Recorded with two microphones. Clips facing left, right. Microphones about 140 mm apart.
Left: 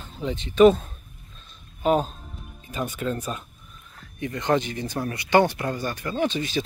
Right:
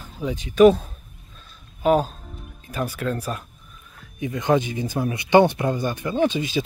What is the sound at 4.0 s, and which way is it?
Speech, 10° right (ahead or behind).